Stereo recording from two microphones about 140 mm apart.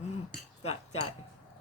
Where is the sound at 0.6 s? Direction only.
50° left (ahead or behind).